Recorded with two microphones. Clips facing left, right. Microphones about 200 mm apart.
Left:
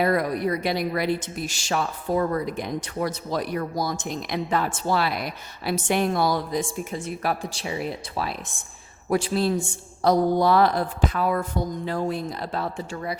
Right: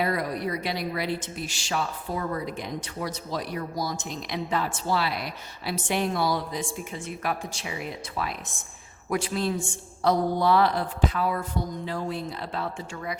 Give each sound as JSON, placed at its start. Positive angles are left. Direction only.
{"t": 0.0, "sound": "a woman's voice", "side_deg": 50}